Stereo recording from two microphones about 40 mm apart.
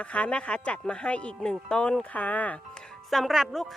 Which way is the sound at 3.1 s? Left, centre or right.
Centre.